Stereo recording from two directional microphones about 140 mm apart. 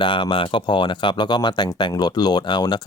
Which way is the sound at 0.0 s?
35° left (ahead or behind).